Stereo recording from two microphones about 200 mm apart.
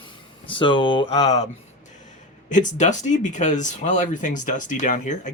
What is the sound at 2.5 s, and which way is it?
Speech, 40° left (ahead or behind).